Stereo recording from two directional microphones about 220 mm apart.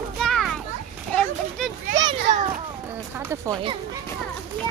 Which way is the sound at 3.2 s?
10° right (ahead or behind).